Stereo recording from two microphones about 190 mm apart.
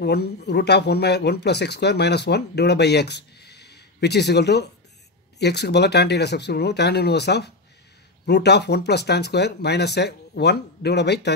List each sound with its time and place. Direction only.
0.0 s speech: 60° left (ahead or behind)